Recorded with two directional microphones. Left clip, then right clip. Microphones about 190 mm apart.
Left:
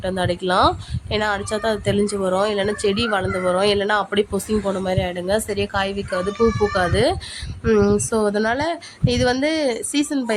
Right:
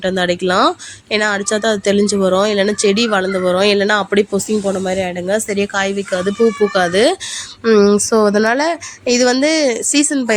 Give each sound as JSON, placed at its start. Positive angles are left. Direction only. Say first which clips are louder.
{"t": 0.0, "sound": "speech", "louder": "right 6 dB", "side_deg": -10}